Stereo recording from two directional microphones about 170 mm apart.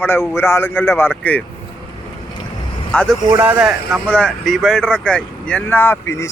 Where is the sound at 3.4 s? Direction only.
10° right (ahead or behind).